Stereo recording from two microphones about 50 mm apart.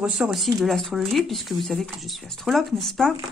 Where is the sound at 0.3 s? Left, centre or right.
Centre.